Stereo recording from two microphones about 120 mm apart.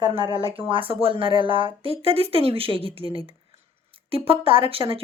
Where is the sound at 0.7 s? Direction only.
50° right (ahead or behind).